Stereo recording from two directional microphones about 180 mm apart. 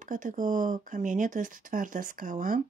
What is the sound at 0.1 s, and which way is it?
Speech, 45° right (ahead or behind).